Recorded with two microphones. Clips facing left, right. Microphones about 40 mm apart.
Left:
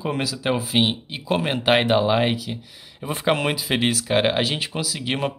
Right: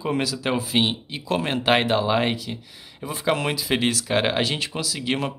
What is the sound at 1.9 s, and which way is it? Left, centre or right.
Speech, centre.